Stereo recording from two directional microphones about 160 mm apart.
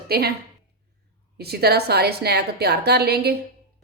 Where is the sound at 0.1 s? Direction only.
80° right.